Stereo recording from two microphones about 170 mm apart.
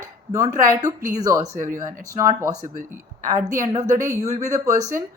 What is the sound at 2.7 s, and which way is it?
A woman's voice, 50° right (ahead or behind).